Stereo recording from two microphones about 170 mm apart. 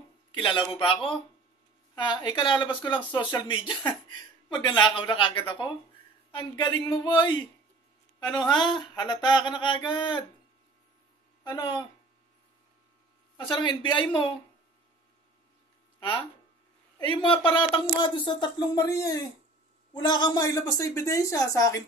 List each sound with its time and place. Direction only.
0.3 s speech: 30° left (ahead or behind)
8.2 s a woman's voice: 5° left (ahead or behind)
8.5 s speech: 25° left (ahead or behind)
11.4 s speech: 25° left (ahead or behind)
13.4 s speech: 25° left (ahead or behind)
16.0 s speech: 30° left (ahead or behind)